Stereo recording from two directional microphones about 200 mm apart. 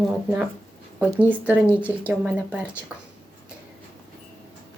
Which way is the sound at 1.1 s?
10° right (ahead or behind).